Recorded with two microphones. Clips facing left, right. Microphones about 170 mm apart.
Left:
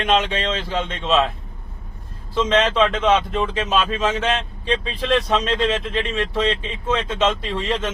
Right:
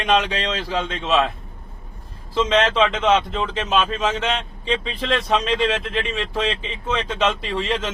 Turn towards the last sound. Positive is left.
turn(degrees=0)  # may be behind; listen again after turning